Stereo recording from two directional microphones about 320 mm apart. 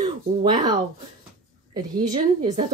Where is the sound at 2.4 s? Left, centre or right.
Centre.